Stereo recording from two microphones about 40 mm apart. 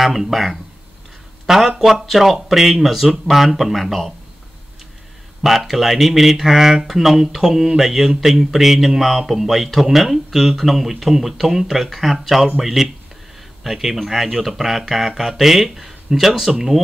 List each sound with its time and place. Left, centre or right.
0.0 s speech: centre
5.4 s speech: centre